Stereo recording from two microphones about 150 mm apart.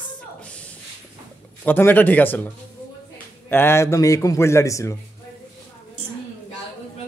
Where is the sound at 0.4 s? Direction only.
10° left (ahead or behind).